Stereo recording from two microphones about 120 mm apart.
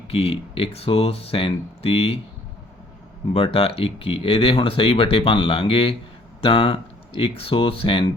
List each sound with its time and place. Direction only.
0.1 s speech: 55° left (ahead or behind)
3.3 s speech: 50° left (ahead or behind)